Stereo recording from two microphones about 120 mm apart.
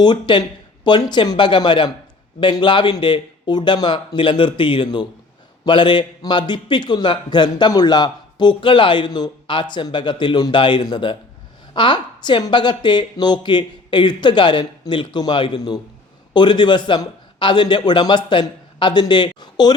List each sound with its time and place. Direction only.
0.0 s a man's voice: 40° left (ahead or behind)